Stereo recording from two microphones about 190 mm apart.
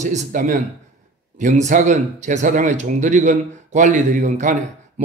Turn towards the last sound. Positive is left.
turn(degrees=-40)  # may be behind; listen again after turning